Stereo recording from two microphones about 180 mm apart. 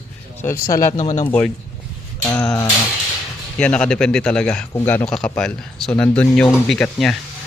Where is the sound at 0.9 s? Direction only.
35° left (ahead or behind).